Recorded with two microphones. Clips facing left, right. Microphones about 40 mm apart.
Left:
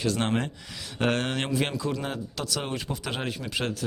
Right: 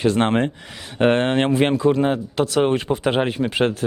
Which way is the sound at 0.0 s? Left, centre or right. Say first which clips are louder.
Right 9 dB; right.